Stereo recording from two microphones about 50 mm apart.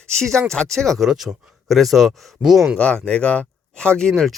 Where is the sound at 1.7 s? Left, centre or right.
Centre.